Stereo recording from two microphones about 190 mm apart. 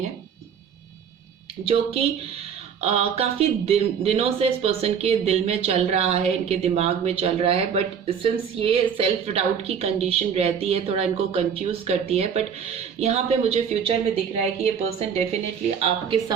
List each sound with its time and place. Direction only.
1.6 s speech: 30° right (ahead or behind)